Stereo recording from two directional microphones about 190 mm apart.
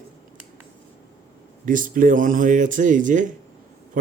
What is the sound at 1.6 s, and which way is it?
Speech, 45° right (ahead or behind).